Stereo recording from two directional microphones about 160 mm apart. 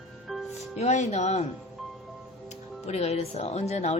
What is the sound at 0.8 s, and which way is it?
Speech, 45° left (ahead or behind).